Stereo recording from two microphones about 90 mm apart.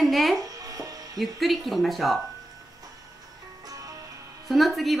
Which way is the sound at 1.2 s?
Centre (ahead or behind).